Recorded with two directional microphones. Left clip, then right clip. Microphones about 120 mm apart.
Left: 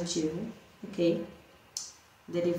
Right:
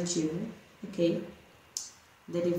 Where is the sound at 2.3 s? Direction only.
25° right (ahead or behind).